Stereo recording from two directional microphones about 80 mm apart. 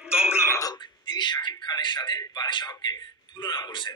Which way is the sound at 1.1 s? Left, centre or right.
Left.